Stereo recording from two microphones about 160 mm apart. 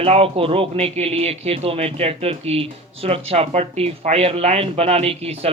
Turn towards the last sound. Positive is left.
turn(degrees=-40)  # may be behind; listen again after turning